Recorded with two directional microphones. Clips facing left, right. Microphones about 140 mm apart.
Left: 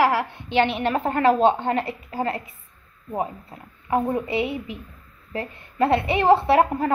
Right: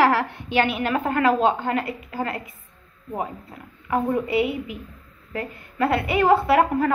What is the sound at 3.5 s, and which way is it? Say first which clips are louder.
A woman's voice: left 1 dB; 30° left (ahead or behind).